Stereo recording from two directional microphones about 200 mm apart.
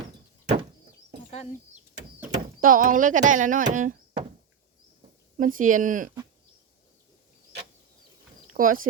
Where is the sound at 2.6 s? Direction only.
40° right (ahead or behind).